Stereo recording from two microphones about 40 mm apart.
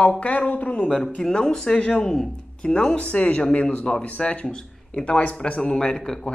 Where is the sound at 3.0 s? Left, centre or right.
Left.